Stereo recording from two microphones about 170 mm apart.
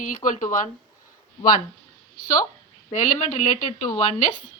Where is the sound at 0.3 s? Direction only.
50° left (ahead or behind).